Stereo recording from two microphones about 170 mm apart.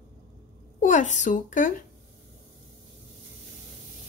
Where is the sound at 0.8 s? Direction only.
45° left (ahead or behind).